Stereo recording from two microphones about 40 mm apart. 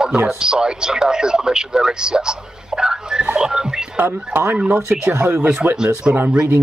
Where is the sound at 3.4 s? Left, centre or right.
Centre.